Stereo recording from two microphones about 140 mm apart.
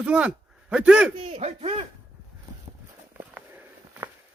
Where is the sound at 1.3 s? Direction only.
50° right (ahead or behind).